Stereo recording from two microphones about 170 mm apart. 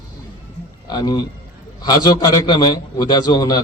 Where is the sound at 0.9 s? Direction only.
25° left (ahead or behind).